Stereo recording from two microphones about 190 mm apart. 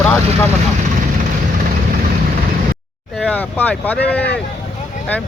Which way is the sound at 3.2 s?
5° left (ahead or behind).